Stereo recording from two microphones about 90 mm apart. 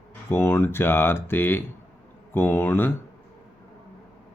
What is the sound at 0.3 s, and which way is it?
Speech, 25° left (ahead or behind).